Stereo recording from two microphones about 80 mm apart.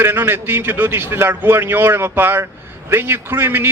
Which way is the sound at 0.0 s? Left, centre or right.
Right.